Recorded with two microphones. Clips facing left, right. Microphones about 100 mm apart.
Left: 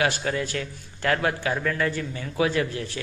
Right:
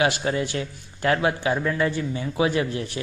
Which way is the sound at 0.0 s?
20° right (ahead or behind).